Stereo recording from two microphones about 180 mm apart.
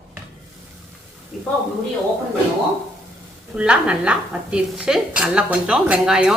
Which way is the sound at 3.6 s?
5° right (ahead or behind).